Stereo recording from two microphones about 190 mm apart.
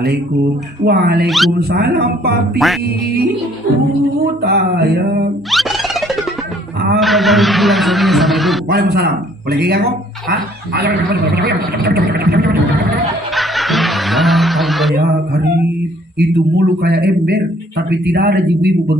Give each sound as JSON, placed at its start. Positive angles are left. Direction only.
{"t": 0.0, "sound": "a man's voice", "side_deg": -60}
{"t": 1.2, "sound": "speech", "side_deg": 0}
{"t": 1.6, "sound": "a man's voice", "side_deg": -55}
{"t": 4.4, "sound": "a man's voice", "side_deg": -55}
{"t": 5.5, "sound": "music", "side_deg": 0}
{"t": 7.0, "sound": "speech", "side_deg": 0}
{"t": 8.6, "sound": "a man's voice", "side_deg": -55}
{"t": 13.3, "sound": "snicker", "side_deg": 0}
{"t": 15.0, "sound": "a man's voice", "side_deg": -55}